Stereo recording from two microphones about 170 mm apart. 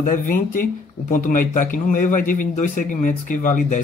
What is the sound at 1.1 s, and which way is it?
Speech, 50° left (ahead or behind).